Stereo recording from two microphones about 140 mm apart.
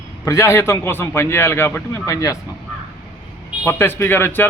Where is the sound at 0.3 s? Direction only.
20° left (ahead or behind).